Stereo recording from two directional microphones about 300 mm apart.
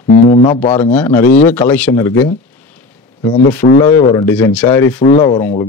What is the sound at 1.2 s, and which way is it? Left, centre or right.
Speech, left.